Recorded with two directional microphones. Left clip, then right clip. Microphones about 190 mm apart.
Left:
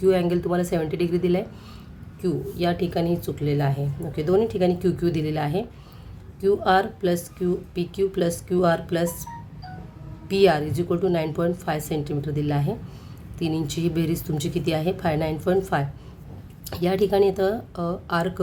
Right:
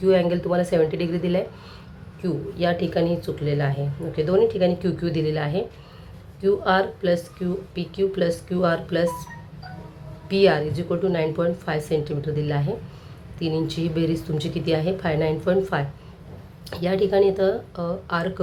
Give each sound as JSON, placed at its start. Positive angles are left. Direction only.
{"t": 0.0, "sound": "speech", "side_deg": 25}
{"t": 10.2, "sound": "a woman's voice", "side_deg": 30}